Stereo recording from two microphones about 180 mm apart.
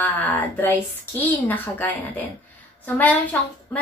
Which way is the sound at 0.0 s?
10° left (ahead or behind).